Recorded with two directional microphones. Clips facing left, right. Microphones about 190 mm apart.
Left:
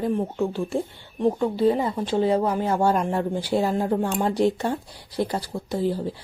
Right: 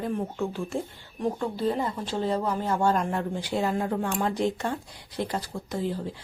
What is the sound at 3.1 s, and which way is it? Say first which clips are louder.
Speech: left 5 dB; 35° left (ahead or behind).